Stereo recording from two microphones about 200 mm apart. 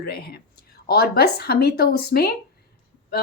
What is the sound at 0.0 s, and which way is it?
A woman's voice, 50° left (ahead or behind).